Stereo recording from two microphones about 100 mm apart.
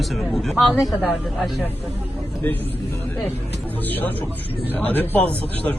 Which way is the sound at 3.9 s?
20° left (ahead or behind).